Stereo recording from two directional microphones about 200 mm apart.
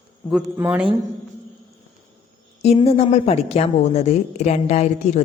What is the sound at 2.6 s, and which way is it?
A woman's voice, 30° left (ahead or behind).